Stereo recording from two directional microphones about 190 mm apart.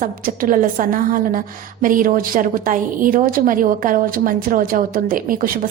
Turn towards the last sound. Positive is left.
turn(degrees=-45)  # may be behind; listen again after turning